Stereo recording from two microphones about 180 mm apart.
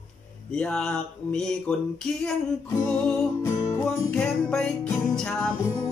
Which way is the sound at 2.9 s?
15° left (ahead or behind).